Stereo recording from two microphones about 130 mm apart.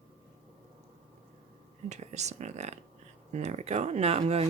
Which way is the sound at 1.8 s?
60° right (ahead or behind).